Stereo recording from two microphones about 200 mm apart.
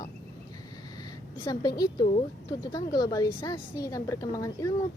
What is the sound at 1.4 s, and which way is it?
A woman's voice, 20° left (ahead or behind).